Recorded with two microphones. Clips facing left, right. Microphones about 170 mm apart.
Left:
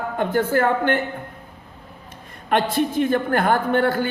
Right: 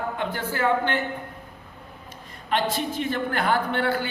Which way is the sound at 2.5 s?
50° left (ahead or behind).